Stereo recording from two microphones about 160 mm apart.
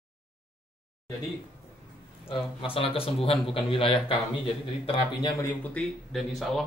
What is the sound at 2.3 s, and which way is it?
Speech, 35° left (ahead or behind).